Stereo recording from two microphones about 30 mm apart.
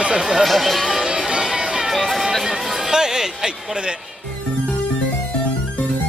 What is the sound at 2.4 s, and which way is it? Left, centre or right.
Chatter, centre.